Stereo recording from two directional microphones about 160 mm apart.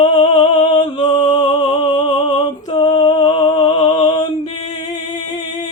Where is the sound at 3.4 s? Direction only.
30° left (ahead or behind).